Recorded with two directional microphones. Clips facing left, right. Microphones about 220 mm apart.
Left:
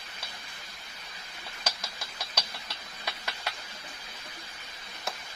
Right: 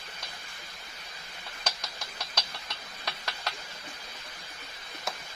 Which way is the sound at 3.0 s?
5° left (ahead or behind).